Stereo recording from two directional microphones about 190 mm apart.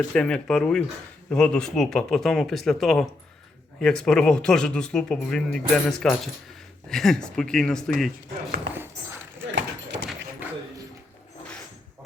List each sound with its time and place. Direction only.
0.1 s speech: 5° left (ahead or behind)
9.6 s clip-clop: 65° right (ahead or behind)